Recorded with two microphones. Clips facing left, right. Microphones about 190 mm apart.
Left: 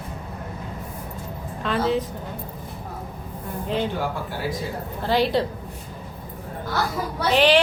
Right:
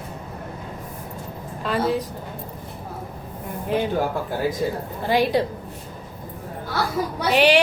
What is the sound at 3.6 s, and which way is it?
Speech, 10° right (ahead or behind).